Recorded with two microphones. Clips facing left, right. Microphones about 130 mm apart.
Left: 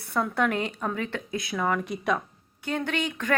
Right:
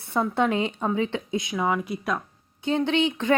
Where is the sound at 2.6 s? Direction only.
25° right (ahead or behind).